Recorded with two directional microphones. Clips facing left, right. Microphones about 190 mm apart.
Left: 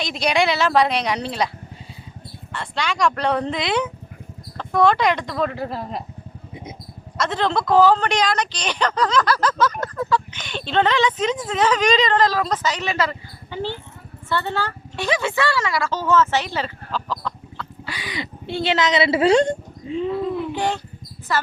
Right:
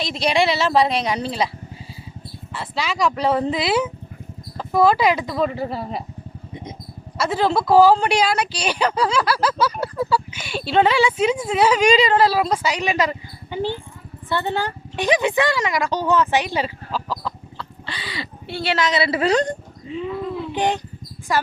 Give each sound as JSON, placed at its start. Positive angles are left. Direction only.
{"t": 0.0, "sound": "a woman's voice", "side_deg": 0}
{"t": 2.5, "sound": "a woman's voice", "side_deg": -5}
{"t": 7.2, "sound": "a woman's voice", "side_deg": -5}
{"t": 17.8, "sound": "speech", "side_deg": 15}
{"t": 19.9, "sound": "speech", "side_deg": 0}
{"t": 20.5, "sound": "a woman's voice", "side_deg": -15}